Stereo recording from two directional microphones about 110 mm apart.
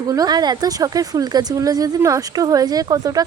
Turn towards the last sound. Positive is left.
turn(degrees=-35)  # may be behind; listen again after turning